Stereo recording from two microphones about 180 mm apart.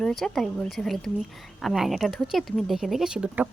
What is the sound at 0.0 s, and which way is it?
A woman's voice, centre (ahead or behind).